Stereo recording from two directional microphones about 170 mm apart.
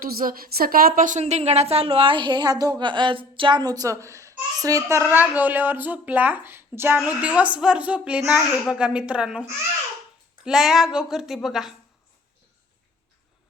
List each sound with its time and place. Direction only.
0.0 s a woman's voice: 55° right (ahead or behind); by 11.7 s centre (ahead or behind)